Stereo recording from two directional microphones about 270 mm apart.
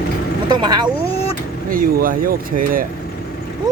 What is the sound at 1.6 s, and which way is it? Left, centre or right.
Speech, right.